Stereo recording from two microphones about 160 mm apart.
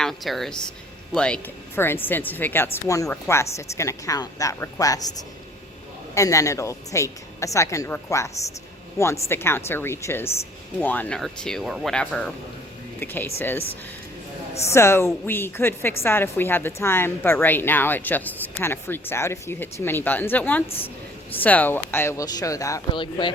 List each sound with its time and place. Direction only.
0.0 s a woman's voice: centre (ahead or behind); by 5.1 s 20° left (ahead or behind)
6.1 s a woman's voice: 20° left (ahead or behind)
23.0 s speech: 30° left (ahead or behind)